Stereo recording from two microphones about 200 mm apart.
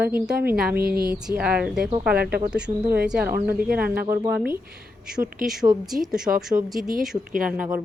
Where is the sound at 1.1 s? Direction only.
5° right (ahead or behind).